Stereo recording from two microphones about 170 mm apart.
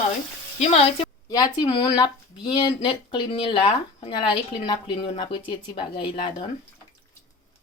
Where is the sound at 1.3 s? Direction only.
25° left (ahead or behind).